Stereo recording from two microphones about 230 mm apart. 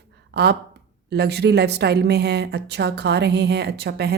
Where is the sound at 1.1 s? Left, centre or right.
Right.